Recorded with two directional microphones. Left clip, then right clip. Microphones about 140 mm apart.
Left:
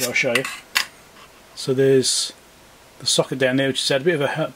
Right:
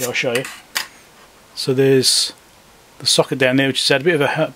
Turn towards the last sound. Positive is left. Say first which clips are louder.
# right 4 dB
turn(degrees=-20)  # may be behind; listen again after turning